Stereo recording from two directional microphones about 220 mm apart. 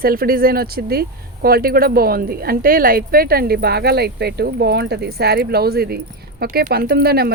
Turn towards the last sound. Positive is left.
turn(degrees=-45)  # may be behind; listen again after turning